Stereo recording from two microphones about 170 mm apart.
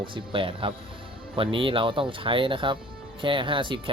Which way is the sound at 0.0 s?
30° right (ahead or behind).